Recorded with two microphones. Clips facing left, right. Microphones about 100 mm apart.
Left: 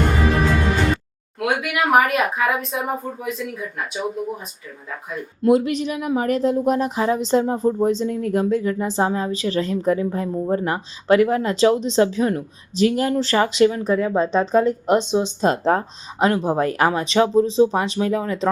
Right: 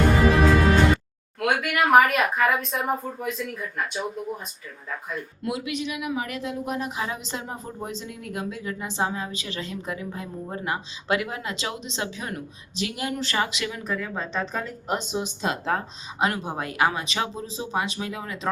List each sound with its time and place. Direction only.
1.4 s speech: 5° left (ahead or behind)
5.5 s speech: 40° left (ahead or behind)